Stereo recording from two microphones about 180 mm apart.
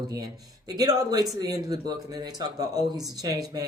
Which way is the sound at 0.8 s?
20° right (ahead or behind).